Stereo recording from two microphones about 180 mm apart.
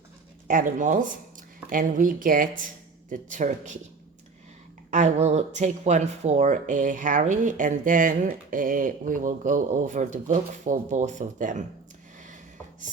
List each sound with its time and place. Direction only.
0.4 s speech: 45° right (ahead or behind)
4.9 s speech: 40° right (ahead or behind)